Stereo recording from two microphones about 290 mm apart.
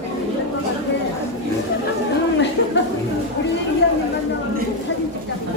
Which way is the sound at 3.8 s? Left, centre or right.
Left.